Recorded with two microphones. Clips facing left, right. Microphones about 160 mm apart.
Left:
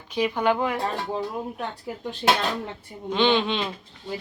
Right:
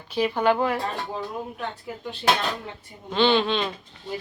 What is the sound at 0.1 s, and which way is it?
Speech, 10° left (ahead or behind).